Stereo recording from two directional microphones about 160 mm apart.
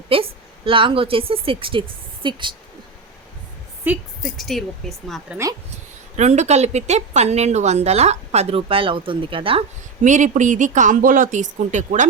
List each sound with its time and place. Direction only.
0.1 s a woman's voice: 35° right (ahead or behind)
4.2 s speech: centre (ahead or behind)
6.1 s a woman's voice: 45° right (ahead or behind)
10.0 s a woman's voice: 50° right (ahead or behind)